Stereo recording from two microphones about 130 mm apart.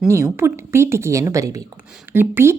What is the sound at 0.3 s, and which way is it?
A woman's voice, 20° right (ahead or behind).